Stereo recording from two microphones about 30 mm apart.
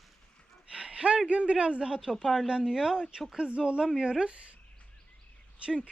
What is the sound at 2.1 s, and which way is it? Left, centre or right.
Speech, centre.